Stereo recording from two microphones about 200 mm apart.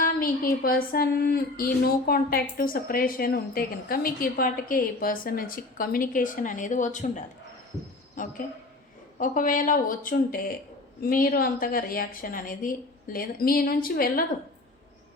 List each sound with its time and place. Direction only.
0.0 s speech: 45° left (ahead or behind)
9.1 s speech: 40° left (ahead or behind)